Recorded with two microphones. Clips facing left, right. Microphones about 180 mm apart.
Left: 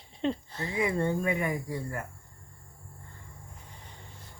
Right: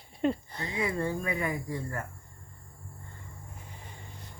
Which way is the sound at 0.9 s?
25° left (ahead or behind).